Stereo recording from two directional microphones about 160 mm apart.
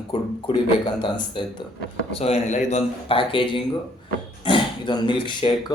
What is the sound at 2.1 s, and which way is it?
Speech, 40° left (ahead or behind).